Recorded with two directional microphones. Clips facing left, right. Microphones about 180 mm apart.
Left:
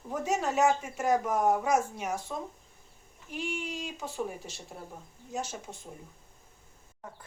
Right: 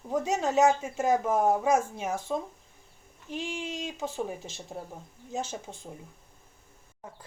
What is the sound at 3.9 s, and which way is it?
Speech, 20° right (ahead or behind).